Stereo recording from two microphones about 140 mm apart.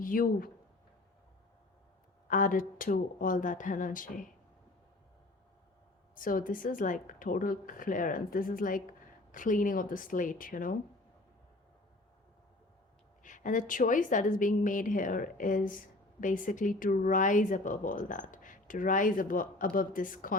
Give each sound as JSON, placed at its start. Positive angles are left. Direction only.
{"t": 0.0, "sound": "speech", "side_deg": 80}
{"t": 2.2, "sound": "speech", "side_deg": 75}
{"t": 6.1, "sound": "speech", "side_deg": 75}
{"t": 13.2, "sound": "speech", "side_deg": 65}